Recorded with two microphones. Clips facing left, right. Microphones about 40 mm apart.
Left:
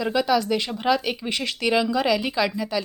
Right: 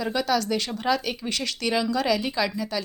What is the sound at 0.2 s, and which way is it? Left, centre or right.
A woman's voice, left.